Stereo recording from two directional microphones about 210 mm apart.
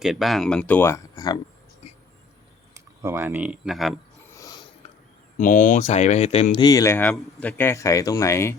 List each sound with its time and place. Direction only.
0.0 s speech: centre (ahead or behind); by 1.4 s 15° left (ahead or behind)
2.7 s speech: 10° right (ahead or behind)
4.4 s a sound: 20° left (ahead or behind)
5.4 s speech: 40° left (ahead or behind); by 8.5 s 15° left (ahead or behind)